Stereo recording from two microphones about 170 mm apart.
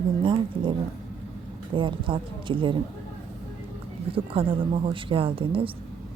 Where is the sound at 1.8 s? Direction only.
30° right (ahead or behind).